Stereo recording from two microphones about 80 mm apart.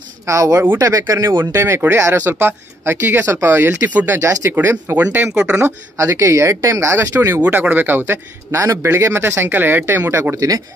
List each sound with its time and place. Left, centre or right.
0.3 s speech: right
1.5 s speech: right
4.2 s speech: right
4.6 s speech: right
5.3 s speech: centre
5.6 s speech: right
8.1 s speech: right
10.3 s speech: right